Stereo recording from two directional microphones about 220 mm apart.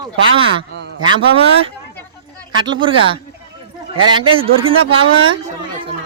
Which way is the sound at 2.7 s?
25° right (ahead or behind).